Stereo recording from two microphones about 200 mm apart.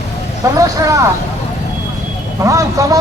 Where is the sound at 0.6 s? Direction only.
15° right (ahead or behind).